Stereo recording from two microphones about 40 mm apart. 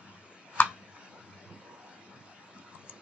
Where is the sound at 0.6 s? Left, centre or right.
Left.